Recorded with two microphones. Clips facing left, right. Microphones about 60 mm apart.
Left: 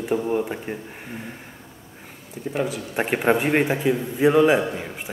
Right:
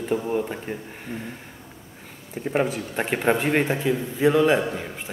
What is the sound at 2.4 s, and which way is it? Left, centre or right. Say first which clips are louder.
Speech: right 2 dB; right.